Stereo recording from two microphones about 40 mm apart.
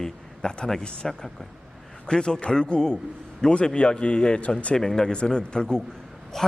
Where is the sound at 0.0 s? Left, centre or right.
Centre.